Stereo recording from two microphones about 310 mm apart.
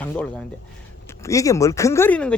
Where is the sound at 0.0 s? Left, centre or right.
Centre.